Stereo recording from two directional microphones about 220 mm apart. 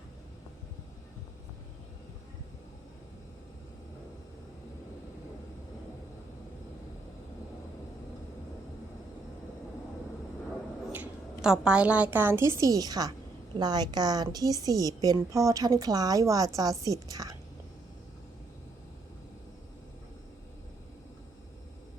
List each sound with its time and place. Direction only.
10.9 s a woman's voice: 5° right (ahead or behind)